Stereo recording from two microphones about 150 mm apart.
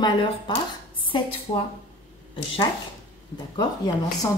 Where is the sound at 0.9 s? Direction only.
35° left (ahead or behind).